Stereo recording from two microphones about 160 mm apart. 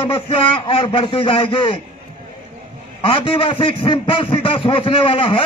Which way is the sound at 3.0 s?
35° left (ahead or behind).